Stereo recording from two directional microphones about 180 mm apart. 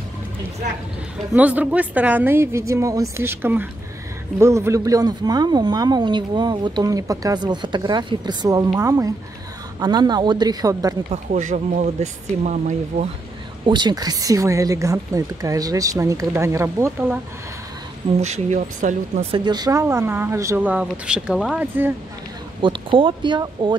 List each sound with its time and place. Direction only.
1.3 s speech: 10° right (ahead or behind)
11.1 s speech: 40° right (ahead or behind)
13.7 s speech: 25° right (ahead or behind)
18.2 s speech: 40° right (ahead or behind)
19.3 s speech: 25° right (ahead or behind)
22.6 s speech: 30° right (ahead or behind)